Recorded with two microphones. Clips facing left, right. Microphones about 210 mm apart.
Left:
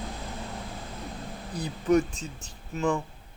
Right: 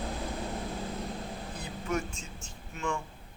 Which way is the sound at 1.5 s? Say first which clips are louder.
Left 11 dB; 35° left (ahead or behind).